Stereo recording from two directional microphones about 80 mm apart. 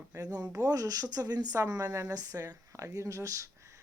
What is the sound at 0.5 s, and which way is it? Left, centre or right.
Speech, right.